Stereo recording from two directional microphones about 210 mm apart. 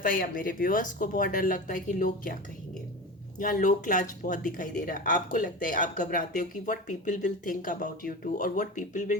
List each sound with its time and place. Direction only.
0.0 s speech: 40° left (ahead or behind)
3.3 s speech: 40° left (ahead or behind)